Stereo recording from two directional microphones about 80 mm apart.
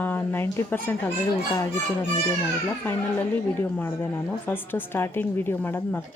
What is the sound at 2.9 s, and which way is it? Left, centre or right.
A woman's voice, left.